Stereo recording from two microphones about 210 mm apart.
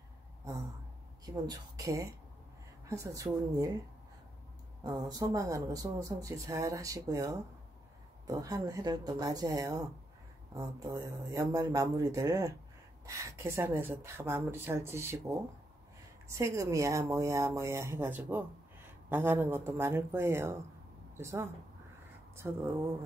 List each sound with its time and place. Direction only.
1.2 s speech: 20° right (ahead or behind)
4.8 s speech: 20° right (ahead or behind)